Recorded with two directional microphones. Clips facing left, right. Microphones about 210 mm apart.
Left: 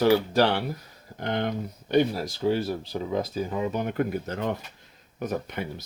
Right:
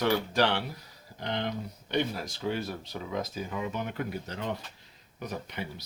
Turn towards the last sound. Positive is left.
turn(degrees=50)  # may be behind; listen again after turning